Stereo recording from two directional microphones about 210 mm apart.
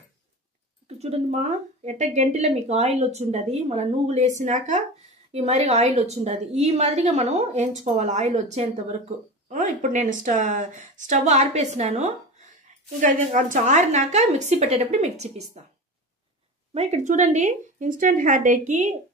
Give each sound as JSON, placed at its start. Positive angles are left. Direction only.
{"t": 0.8, "sound": "a woman's voice", "side_deg": -30}
{"t": 16.7, "sound": "a woman's voice", "side_deg": -30}